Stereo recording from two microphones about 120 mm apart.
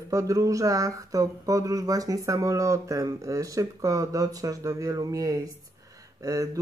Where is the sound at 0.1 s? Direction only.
30° right (ahead or behind).